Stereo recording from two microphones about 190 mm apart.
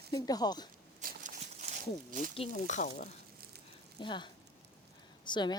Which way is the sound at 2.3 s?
40° left (ahead or behind).